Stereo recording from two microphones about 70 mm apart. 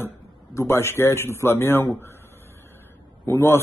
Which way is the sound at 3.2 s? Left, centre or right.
Left.